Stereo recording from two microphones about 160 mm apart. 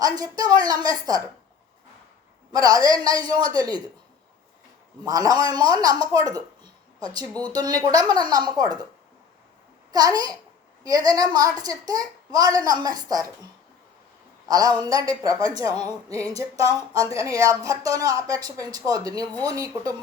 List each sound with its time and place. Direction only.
0.0 s a woman's voice: 25° right (ahead or behind)
2.5 s a woman's voice: 20° right (ahead or behind)
5.0 s a woman's voice: 20° right (ahead or behind)
9.9 s a woman's voice: 25° right (ahead or behind)
14.4 s a woman's voice: 20° right (ahead or behind)